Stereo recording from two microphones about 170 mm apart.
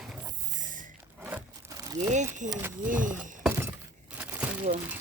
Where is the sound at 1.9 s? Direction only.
45° right (ahead or behind).